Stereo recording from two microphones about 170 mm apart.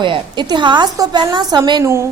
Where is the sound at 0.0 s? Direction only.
25° right (ahead or behind).